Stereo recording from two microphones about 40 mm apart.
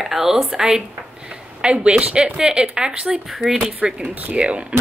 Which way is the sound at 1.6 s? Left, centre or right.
Right.